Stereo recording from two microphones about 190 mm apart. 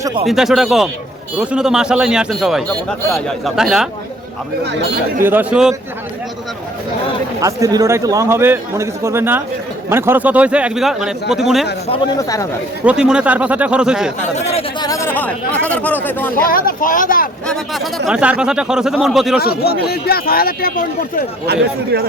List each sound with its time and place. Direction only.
0.0 s speech: 25° right (ahead or behind)
0.3 s speech: centre (ahead or behind)
5.2 s a man's voice: 10° right (ahead or behind)
7.4 s a man's voice: 20° right (ahead or behind); by 11.7 s centre (ahead or behind)
12.8 s speech: 5° right (ahead or behind)
14.5 s speech: 20° left (ahead or behind)
16.3 s speech: 50° left (ahead or behind)
17.4 s speech: 5° left (ahead or behind)
19.4 s speech: 55° left (ahead or behind)
21.4 s speech: 60° right (ahead or behind)